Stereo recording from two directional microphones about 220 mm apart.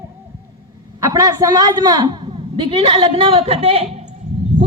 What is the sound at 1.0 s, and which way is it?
A woman's voice, 15° right (ahead or behind).